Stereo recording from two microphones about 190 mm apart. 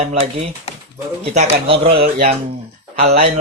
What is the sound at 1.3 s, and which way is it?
Speech, 35° right (ahead or behind).